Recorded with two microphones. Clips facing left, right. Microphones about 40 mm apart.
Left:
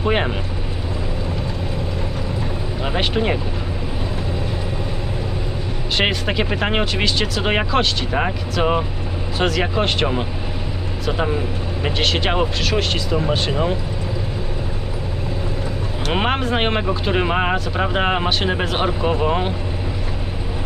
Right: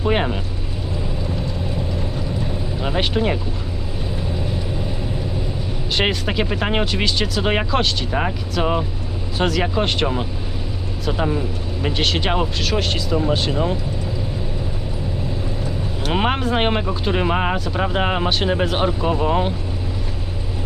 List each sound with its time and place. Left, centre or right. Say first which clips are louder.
0.0 s speech: even; centre
2.8 s speech: even; centre
6.0 s speech: left 1 dB; centre
11.2 s speech: even; centre
11.9 s speech: left 1 dB; centre
16.1 s speech: even; centre
18.9 s speech: even; centre